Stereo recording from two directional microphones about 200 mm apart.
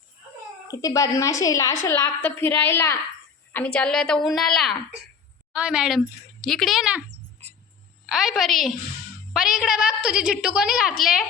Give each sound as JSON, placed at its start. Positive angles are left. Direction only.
{"t": 0.7, "sound": "a woman's voice", "side_deg": 15}
{"t": 8.1, "sound": "a woman's voice", "side_deg": 0}